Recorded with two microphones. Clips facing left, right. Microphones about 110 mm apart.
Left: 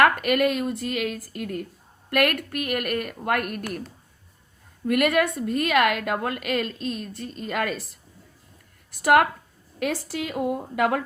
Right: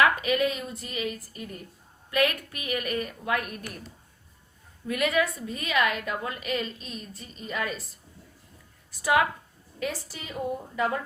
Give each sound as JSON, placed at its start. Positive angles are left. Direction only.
{"t": 0.0, "sound": "a woman's voice", "side_deg": 60}
{"t": 2.0, "sound": "speech", "side_deg": 70}
{"t": 4.9, "sound": "a woman's voice", "side_deg": 60}
{"t": 8.9, "sound": "speech", "side_deg": 65}
{"t": 10.1, "sound": "a woman's voice", "side_deg": 75}